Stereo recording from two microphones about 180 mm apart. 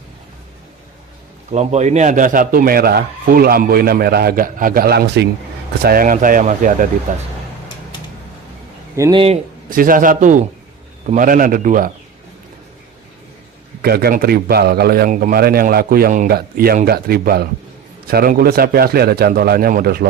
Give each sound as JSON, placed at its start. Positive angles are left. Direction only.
{"t": 1.5, "sound": "speech", "side_deg": -40}
{"t": 5.8, "sound": "speech", "side_deg": -55}
{"t": 9.0, "sound": "speech", "side_deg": -20}
{"t": 9.6, "sound": "speech", "side_deg": -50}
{"t": 13.8, "sound": "speech", "side_deg": -60}